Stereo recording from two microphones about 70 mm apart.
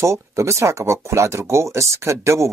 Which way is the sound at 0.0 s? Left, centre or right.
Right.